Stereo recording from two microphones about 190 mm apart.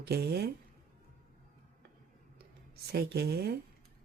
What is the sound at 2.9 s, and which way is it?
Speech, 60° right (ahead or behind).